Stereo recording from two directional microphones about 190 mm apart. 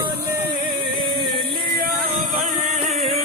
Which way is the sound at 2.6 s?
35° right (ahead or behind).